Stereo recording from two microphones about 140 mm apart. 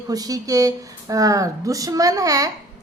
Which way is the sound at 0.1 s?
25° right (ahead or behind).